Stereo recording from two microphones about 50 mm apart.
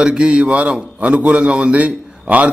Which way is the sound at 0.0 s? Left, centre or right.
Centre.